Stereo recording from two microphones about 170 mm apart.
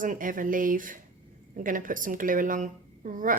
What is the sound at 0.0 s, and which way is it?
A woman's voice, 50° right (ahead or behind).